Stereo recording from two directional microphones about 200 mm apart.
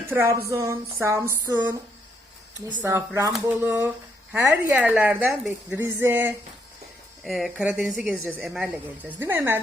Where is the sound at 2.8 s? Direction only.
15° right (ahead or behind).